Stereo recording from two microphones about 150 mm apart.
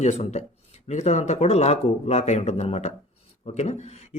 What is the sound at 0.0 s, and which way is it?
Speech, 50° left (ahead or behind).